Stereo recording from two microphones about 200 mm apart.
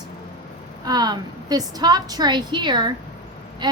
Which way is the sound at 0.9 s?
20° right (ahead or behind).